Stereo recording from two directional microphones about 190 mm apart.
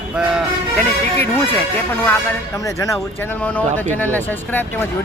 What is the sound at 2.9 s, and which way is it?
Speech, 10° left (ahead or behind).